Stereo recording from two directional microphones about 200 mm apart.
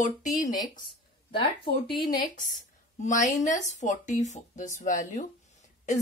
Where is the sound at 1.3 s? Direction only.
25° left (ahead or behind).